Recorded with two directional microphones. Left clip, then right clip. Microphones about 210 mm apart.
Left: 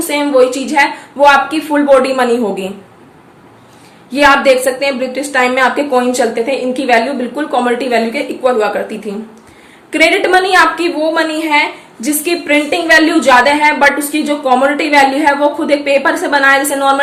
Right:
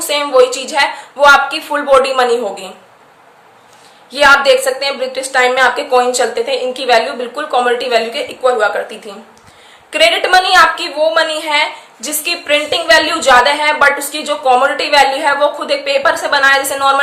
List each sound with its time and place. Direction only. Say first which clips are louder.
0.0 s a woman's voice: even; 15° right (ahead or behind)
4.1 s a woman's voice: even; 15° right (ahead or behind)